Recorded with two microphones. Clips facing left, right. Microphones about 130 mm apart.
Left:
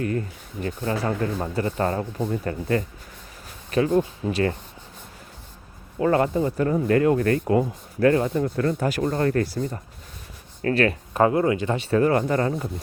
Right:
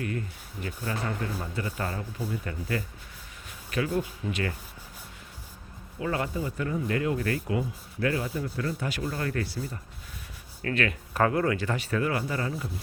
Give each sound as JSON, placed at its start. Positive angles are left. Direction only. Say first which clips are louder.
{"t": 0.0, "sound": "speech", "louder": "left 7 dB", "side_deg": 35}
{"t": 6.0, "sound": "speech", "louder": "left 10 dB", "side_deg": 45}
{"t": 10.6, "sound": "speech", "louder": "left 7 dB", "side_deg": 35}
{"t": 11.1, "sound": "speech", "louder": "left 4 dB", "side_deg": 25}
{"t": 11.9, "sound": "speech", "louder": "left 10 dB", "side_deg": 40}